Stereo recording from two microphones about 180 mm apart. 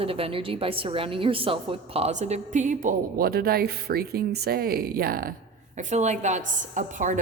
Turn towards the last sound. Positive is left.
turn(degrees=-45)  # may be behind; listen again after turning